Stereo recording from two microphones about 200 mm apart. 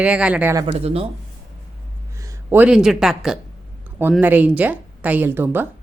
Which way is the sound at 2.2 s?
10° right (ahead or behind).